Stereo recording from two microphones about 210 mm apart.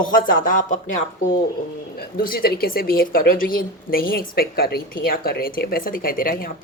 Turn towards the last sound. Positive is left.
turn(degrees=45)  # may be behind; listen again after turning